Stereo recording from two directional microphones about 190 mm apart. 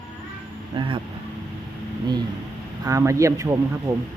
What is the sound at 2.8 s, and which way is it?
Speech, 15° right (ahead or behind).